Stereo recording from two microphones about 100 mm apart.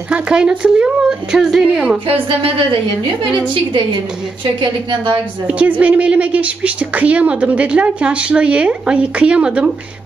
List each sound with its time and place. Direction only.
0.1 s a woman's voice: 10° right (ahead or behind)
4.6 s a woman's voice: 50° right (ahead or behind)
5.5 s a woman's voice: 15° right (ahead or behind)